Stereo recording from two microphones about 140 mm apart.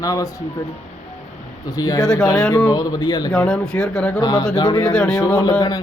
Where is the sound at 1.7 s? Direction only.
25° left (ahead or behind).